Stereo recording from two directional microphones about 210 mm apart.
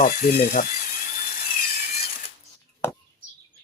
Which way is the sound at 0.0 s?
40° left (ahead or behind).